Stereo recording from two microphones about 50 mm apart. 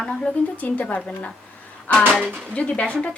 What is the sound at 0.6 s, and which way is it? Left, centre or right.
A woman's voice, left.